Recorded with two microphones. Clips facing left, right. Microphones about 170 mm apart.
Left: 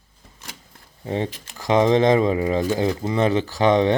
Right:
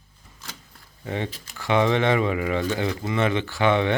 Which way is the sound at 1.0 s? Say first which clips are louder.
Left 4 dB; 30° left (ahead or behind).